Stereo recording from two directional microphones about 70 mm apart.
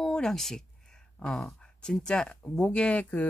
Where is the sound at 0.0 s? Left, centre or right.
Centre.